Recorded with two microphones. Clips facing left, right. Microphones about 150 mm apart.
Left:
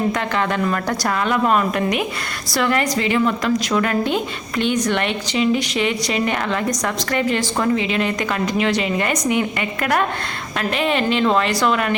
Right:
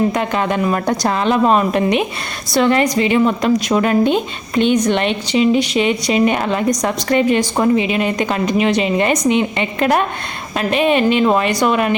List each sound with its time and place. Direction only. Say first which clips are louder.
0.1 s a woman's voice: right 3 dB; 20° right (ahead or behind)